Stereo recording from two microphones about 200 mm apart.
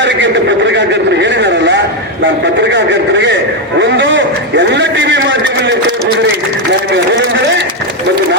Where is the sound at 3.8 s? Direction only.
65° right (ahead or behind).